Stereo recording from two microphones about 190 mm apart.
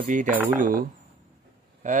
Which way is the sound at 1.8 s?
40° right (ahead or behind).